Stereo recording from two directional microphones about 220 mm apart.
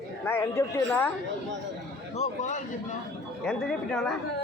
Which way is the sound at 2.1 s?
30° left (ahead or behind).